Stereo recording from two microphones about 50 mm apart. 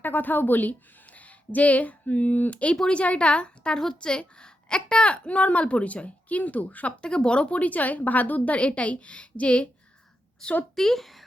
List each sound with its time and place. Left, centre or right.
0.0 s a woman's voice: left
7.0 s a woman's voice: centre
10.4 s speech: centre